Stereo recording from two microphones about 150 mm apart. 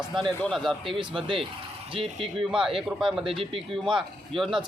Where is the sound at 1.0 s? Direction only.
35° right (ahead or behind).